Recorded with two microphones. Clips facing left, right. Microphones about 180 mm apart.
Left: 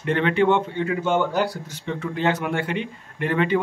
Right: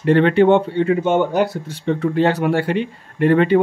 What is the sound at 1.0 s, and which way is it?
Speech, 20° right (ahead or behind).